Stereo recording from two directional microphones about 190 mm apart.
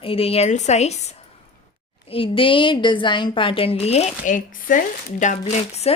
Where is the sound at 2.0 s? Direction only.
30° left (ahead or behind).